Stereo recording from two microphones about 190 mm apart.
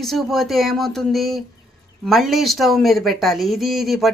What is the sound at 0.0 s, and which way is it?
Speech, centre (ahead or behind).